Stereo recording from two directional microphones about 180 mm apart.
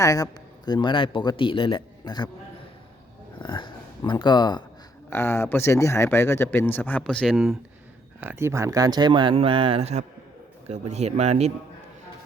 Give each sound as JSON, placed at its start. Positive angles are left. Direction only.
{"t": 0.0, "sound": "speech", "side_deg": 20}
{"t": 3.3, "sound": "speech", "side_deg": 25}
{"t": 8.2, "sound": "speech", "side_deg": -10}